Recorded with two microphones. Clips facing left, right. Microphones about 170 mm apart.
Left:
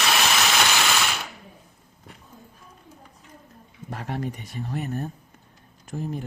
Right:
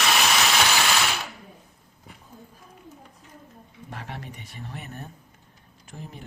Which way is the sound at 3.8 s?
40° left (ahead or behind).